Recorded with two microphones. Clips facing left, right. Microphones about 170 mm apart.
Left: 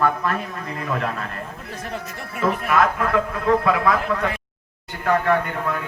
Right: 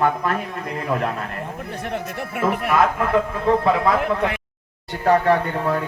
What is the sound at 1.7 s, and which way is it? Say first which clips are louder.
Speech: right 4 dB; 65° right (ahead or behind).